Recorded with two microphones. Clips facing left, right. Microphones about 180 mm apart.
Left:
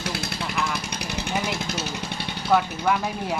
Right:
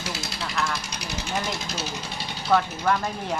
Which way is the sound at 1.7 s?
60° left (ahead or behind).